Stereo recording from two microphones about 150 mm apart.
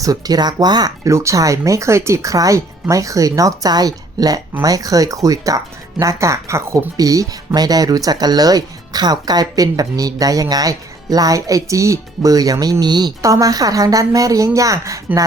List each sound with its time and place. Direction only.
0.0 s speech: 25° right (ahead or behind)